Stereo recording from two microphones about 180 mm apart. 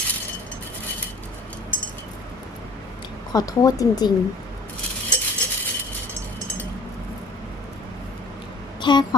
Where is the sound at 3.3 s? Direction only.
20° left (ahead or behind).